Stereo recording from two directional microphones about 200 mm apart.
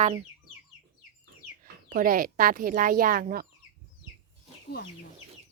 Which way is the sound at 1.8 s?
45° right (ahead or behind).